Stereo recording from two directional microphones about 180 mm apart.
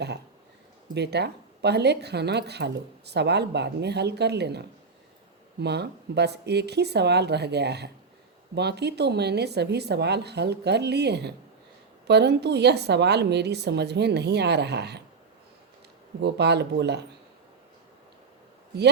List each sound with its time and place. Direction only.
0.9 s speech: 65° right (ahead or behind)
16.2 s speech: 70° right (ahead or behind)